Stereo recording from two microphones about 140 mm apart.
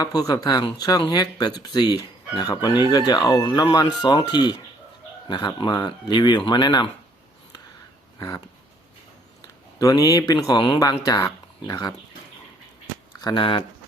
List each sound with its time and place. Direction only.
0.0 s speech: 25° left (ahead or behind)
9.7 s speech: 25° left (ahead or behind)
13.2 s speech: 35° left (ahead or behind)